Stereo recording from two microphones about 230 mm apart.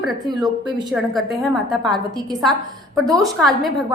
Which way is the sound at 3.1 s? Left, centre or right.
Centre.